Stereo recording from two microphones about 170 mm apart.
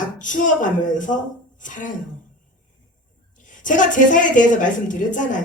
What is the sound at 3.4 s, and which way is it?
A woman's voice, 50° left (ahead or behind).